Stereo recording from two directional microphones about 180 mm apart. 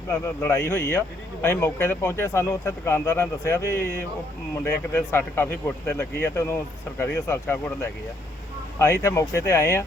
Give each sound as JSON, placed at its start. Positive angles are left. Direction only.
{"t": 0.1, "sound": "speech", "side_deg": 15}